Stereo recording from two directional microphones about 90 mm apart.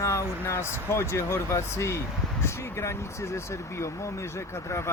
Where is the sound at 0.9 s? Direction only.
30° left (ahead or behind).